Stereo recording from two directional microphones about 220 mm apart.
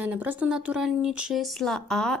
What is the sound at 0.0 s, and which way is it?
Speech, 5° right (ahead or behind).